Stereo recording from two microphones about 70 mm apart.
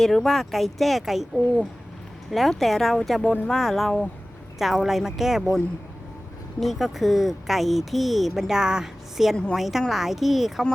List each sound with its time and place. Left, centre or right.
0.0 s speech: centre
6.6 s speech: centre
9.3 s a woman's voice: centre
9.6 s speech: centre